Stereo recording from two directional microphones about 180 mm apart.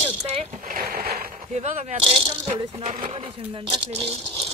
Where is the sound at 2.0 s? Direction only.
30° right (ahead or behind).